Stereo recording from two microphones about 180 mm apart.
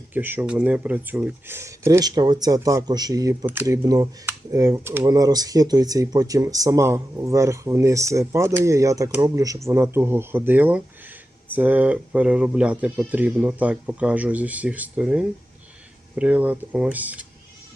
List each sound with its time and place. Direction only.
0.1 s speech: 10° right (ahead or behind)